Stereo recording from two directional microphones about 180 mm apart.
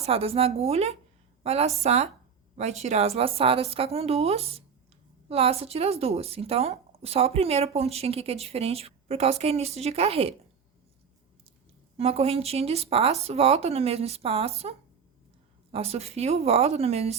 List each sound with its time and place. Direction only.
0.0 s speech: 30° right (ahead or behind)
11.9 s speech: 35° right (ahead or behind)